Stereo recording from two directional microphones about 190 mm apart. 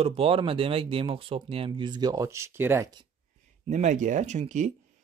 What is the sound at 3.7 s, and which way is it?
Speech, 40° right (ahead or behind).